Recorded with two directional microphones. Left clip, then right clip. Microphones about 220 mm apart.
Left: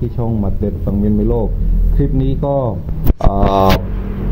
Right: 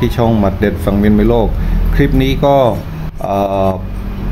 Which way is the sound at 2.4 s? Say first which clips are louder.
Right 8 dB; 35° right (ahead or behind).